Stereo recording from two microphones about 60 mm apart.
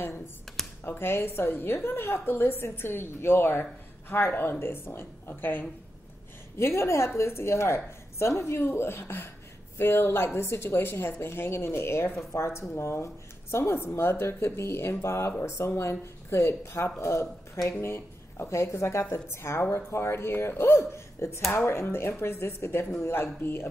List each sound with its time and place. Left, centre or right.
0.8 s a woman's voice: left
6.6 s a woman's voice: left